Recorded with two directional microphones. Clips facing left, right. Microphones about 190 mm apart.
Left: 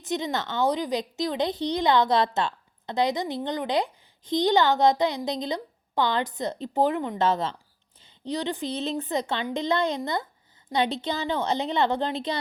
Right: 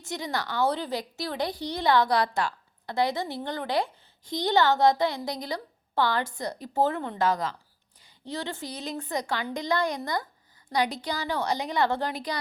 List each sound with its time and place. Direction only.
0.0 s a woman's voice: 20° left (ahead or behind)